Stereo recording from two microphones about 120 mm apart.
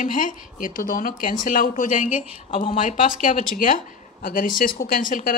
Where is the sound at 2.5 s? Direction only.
50° left (ahead or behind).